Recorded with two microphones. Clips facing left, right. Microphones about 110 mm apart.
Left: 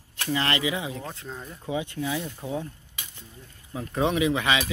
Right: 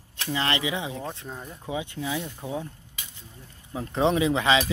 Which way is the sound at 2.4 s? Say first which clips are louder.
Left 1 dB; 15° right (ahead or behind).